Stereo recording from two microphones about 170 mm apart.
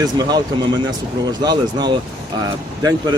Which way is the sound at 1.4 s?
25° right (ahead or behind).